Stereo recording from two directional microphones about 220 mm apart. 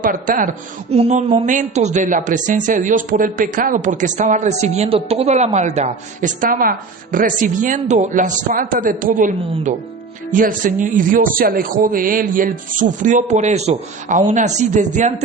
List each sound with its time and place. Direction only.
0.0 s a woman's voice: 40° right (ahead or behind)